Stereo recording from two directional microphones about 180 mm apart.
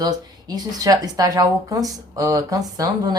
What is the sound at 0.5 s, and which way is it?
A woman's voice, 20° right (ahead or behind).